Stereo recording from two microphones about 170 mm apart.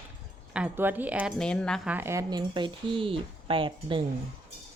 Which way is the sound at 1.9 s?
15° right (ahead or behind).